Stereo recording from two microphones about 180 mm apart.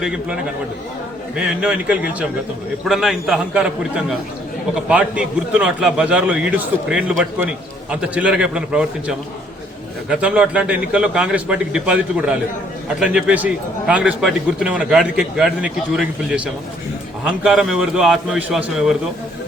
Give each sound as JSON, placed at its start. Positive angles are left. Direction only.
{"t": 0.0, "sound": "a man's voice", "side_deg": -5}
{"t": 1.4, "sound": "a man's voice", "side_deg": -5}